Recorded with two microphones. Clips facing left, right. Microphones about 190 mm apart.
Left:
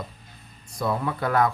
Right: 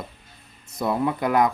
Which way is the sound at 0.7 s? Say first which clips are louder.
Right 3 dB; 20° right (ahead or behind).